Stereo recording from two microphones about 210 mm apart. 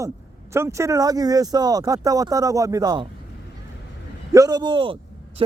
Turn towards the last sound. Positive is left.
turn(degrees=-25)  # may be behind; listen again after turning